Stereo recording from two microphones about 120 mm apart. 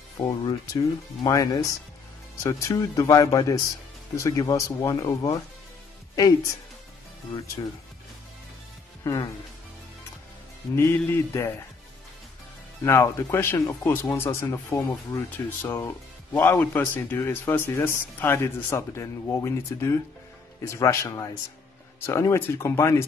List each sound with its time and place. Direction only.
0.2 s speech: 35° left (ahead or behind)
9.0 s speech: 25° left (ahead or behind)
11.1 s speech: 20° left (ahead or behind)
12.8 s speech: 20° left (ahead or behind)